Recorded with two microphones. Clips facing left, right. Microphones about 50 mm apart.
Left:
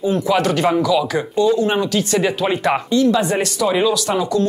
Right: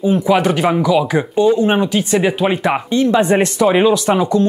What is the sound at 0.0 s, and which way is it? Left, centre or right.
Speech, centre.